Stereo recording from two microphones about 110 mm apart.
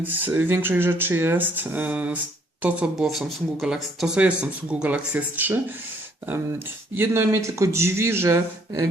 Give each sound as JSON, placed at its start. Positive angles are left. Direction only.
{"t": 0.0, "sound": "speech", "side_deg": -15}
{"t": 6.9, "sound": "speech", "side_deg": -20}